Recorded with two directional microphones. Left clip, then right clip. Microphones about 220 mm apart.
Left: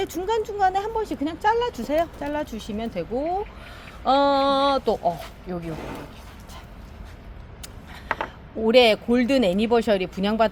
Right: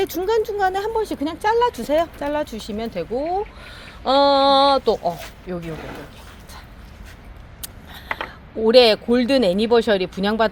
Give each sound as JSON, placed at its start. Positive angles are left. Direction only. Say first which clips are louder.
{"t": 0.0, "sound": "speech", "louder": "right 5 dB", "side_deg": -45}
{"t": 8.6, "sound": "speech", "louder": "right 4 dB", "side_deg": -25}